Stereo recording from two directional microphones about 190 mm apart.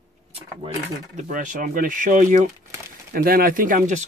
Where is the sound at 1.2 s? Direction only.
45° right (ahead or behind).